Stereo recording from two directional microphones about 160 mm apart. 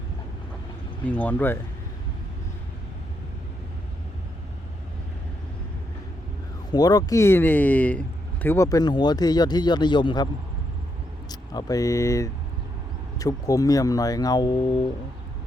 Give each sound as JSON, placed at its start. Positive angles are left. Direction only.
{"t": 1.0, "sound": "speech", "side_deg": 10}
{"t": 6.7, "sound": "speech", "side_deg": 25}
{"t": 11.3, "sound": "speech", "side_deg": 25}